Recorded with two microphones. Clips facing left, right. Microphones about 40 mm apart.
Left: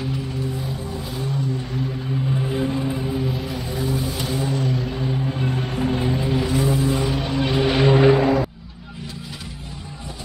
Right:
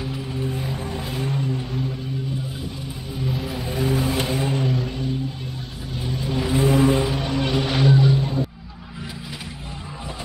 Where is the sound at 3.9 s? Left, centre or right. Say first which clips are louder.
Right 5 dB; right.